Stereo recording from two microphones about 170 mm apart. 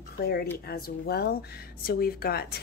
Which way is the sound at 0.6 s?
60° left (ahead or behind).